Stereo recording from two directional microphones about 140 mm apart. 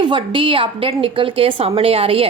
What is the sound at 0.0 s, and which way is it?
A woman's voice, 35° right (ahead or behind).